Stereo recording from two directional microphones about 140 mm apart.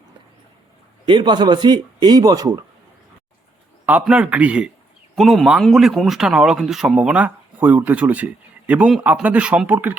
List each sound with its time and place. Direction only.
1.0 s a man's voice: 35° right (ahead or behind)
3.8 s speech: 10° right (ahead or behind)